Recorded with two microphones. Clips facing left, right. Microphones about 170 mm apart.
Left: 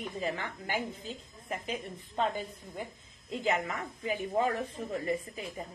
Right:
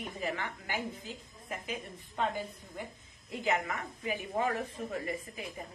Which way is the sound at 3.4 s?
30° left (ahead or behind).